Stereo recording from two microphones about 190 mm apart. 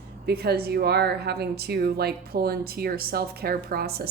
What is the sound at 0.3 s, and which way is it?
Speech, 55° right (ahead or behind).